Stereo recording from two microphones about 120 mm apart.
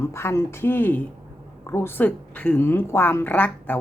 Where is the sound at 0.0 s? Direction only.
20° left (ahead or behind).